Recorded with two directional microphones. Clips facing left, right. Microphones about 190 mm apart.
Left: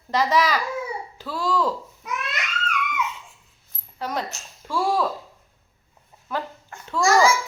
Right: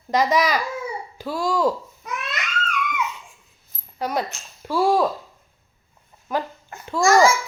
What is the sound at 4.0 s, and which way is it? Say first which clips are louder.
Speech: right 4 dB; 10° right (ahead or behind).